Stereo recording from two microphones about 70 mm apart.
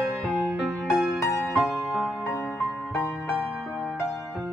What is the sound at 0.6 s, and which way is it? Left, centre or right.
Music, centre.